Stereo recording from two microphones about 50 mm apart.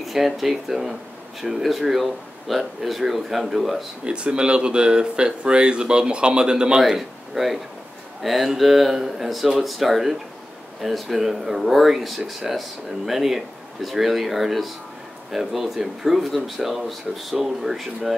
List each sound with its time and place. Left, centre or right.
0.0 s speech: centre
4.0 s speech: centre
6.8 s speech: centre